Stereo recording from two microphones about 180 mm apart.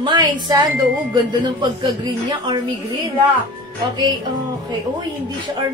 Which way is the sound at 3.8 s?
25° right (ahead or behind).